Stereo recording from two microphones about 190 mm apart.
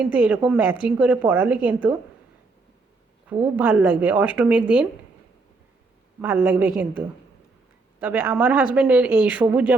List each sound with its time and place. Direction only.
0.0 s speech: 5° right (ahead or behind)
3.4 s speech: 10° right (ahead or behind)
6.2 s speech: 10° right (ahead or behind)